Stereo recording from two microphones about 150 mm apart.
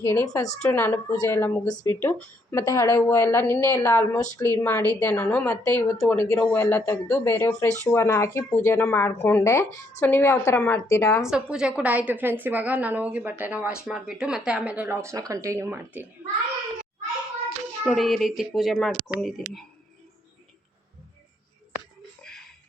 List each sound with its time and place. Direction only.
0.0 s a woman's voice: 15° left (ahead or behind)
1.6 s speech: 25° left (ahead or behind)
2.0 s a woman's voice: 10° left (ahead or behind)
11.3 s speech: 5° right (ahead or behind)
17.8 s speech: centre (ahead or behind)